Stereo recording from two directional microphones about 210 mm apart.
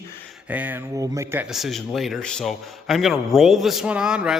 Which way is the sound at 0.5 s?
10° right (ahead or behind).